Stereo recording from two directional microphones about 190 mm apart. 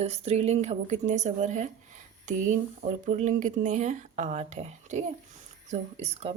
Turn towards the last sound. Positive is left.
turn(degrees=-30)  # may be behind; listen again after turning